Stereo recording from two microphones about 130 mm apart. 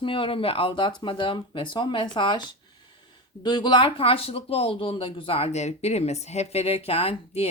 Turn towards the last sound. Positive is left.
turn(degrees=50)  # may be behind; listen again after turning